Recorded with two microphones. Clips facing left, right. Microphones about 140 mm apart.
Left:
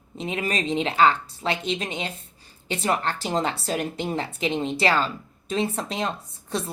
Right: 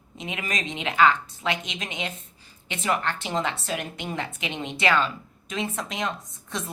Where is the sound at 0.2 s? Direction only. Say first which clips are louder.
Left 5 dB; 35° left (ahead or behind).